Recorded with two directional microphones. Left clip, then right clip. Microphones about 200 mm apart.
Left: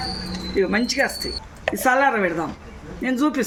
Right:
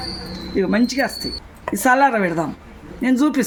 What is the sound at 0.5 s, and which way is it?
Speech, 45° right (ahead or behind).